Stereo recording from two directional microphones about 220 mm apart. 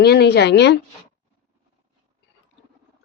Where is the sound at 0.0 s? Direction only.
45° left (ahead or behind).